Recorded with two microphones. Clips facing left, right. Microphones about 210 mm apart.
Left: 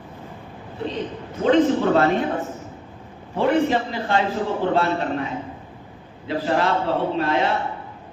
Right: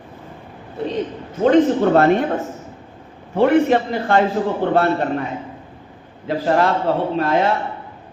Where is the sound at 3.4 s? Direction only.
60° right (ahead or behind).